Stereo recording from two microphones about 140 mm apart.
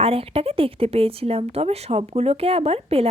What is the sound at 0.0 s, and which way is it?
Speech, 40° right (ahead or behind).